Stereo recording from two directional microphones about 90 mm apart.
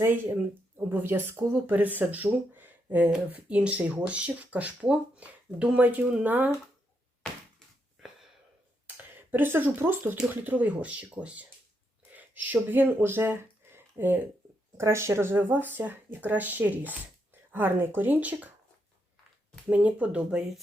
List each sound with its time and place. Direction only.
0.9 s speech: 25° right (ahead or behind)
9.1 s speech: 20° right (ahead or behind)
19.7 s speech: 15° right (ahead or behind)